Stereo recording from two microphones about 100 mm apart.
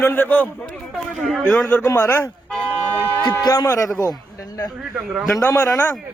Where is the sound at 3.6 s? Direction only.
30° left (ahead or behind).